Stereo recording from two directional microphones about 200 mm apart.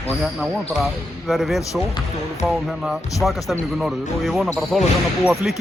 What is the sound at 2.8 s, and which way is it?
Speech, centre (ahead or behind).